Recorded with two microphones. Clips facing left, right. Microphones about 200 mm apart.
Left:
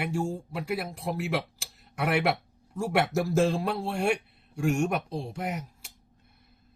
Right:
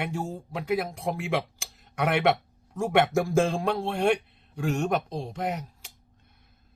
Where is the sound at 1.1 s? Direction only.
5° left (ahead or behind).